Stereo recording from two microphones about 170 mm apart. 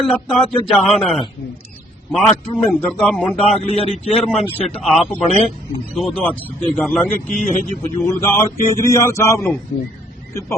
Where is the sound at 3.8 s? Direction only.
35° left (ahead or behind).